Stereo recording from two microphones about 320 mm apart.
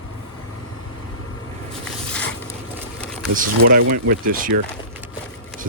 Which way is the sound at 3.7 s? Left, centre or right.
Right.